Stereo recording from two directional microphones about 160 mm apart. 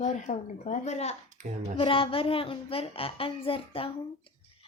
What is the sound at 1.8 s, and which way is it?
A woman's voice, 35° left (ahead or behind).